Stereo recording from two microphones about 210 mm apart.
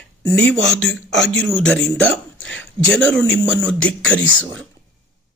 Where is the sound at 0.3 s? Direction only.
5° left (ahead or behind).